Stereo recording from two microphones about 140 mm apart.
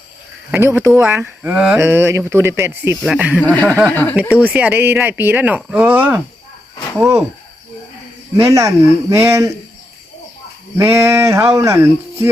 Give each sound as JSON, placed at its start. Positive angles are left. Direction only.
{"t": 0.5, "sound": "speech", "side_deg": -15}
{"t": 3.4, "sound": "chuckle", "side_deg": 10}
{"t": 4.1, "sound": "speech", "side_deg": -10}
{"t": 8.4, "sound": "speech", "side_deg": -20}
{"t": 10.8, "sound": "speech", "side_deg": -20}